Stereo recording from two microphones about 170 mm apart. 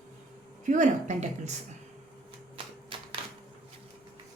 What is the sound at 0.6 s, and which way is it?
Speech, 45° right (ahead or behind).